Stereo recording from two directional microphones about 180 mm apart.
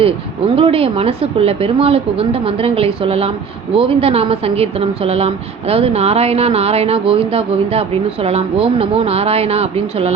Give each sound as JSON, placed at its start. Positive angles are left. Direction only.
{"t": 0.5, "sound": "a woman's voice", "side_deg": -30}